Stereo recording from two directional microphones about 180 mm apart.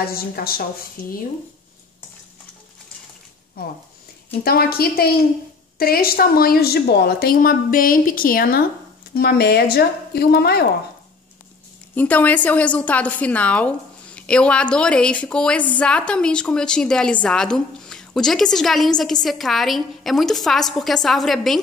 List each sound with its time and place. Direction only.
0.1 s a woman's voice: 55° left (ahead or behind)
3.6 s a woman's voice: 55° left (ahead or behind)
11.9 s a woman's voice: 10° left (ahead or behind)